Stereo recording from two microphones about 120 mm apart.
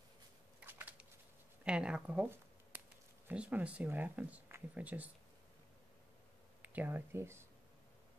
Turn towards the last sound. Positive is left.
turn(degrees=-20)  # may be behind; listen again after turning